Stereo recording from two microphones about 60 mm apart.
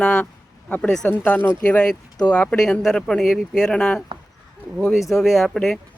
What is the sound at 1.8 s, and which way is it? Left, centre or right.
Speech, left.